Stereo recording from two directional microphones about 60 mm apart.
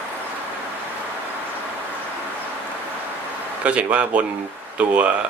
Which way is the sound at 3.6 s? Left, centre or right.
Right.